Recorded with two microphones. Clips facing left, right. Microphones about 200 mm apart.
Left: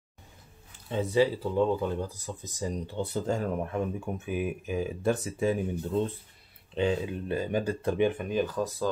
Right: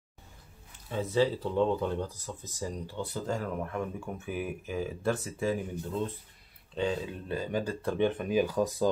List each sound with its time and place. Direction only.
0.8 s speech: 20° left (ahead or behind)
1.2 s speech: 5° left (ahead or behind)
6.7 s speech: 20° left (ahead or behind)
8.1 s speech: centre (ahead or behind)